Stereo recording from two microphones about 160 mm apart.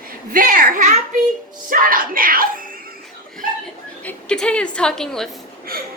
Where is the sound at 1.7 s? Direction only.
60° right (ahead or behind).